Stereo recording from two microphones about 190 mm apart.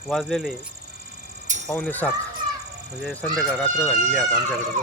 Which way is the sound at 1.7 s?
10° left (ahead or behind).